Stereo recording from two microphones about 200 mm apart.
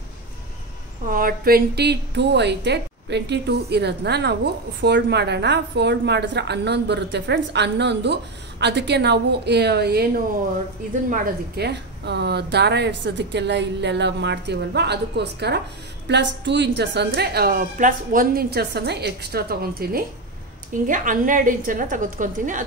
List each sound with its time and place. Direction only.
1.0 s a woman's voice: 45° right (ahead or behind)
11.1 s a woman's voice: 55° right (ahead or behind)